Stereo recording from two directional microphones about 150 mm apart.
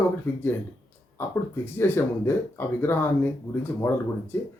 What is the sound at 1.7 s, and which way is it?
Speech, 15° left (ahead or behind).